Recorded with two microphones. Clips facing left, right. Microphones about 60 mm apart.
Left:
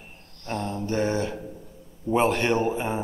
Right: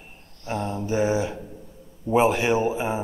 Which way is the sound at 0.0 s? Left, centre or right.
Centre.